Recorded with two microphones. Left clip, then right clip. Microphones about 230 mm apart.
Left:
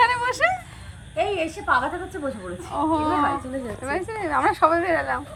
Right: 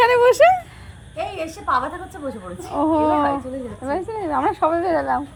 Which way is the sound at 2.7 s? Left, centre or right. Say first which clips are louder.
Right 4 dB; right.